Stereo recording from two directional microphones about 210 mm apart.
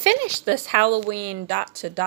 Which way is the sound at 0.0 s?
35° right (ahead or behind).